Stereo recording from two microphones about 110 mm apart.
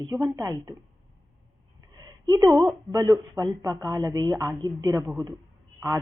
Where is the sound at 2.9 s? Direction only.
35° right (ahead or behind).